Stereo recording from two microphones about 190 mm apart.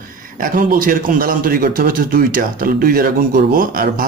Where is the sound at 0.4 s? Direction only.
45° right (ahead or behind).